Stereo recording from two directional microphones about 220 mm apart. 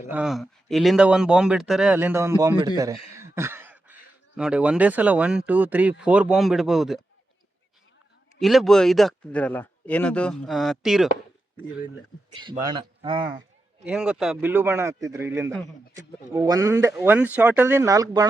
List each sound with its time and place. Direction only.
0.1 s speech: 5° right (ahead or behind)
8.4 s speech: centre (ahead or behind)
12.3 s speech: 20° right (ahead or behind)
13.9 s speech: 5° right (ahead or behind)